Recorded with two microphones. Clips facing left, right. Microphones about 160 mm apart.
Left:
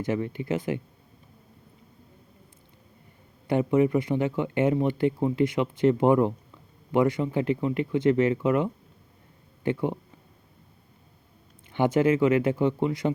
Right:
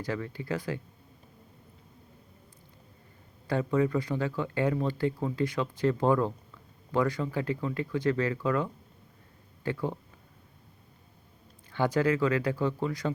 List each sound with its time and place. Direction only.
0.0 s speech: 20° left (ahead or behind)
3.4 s speech: 20° left (ahead or behind)
11.7 s speech: 20° left (ahead or behind)